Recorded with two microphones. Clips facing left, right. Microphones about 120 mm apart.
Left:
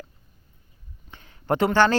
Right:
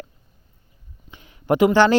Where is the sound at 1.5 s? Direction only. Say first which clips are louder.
Right 4 dB; 15° right (ahead or behind).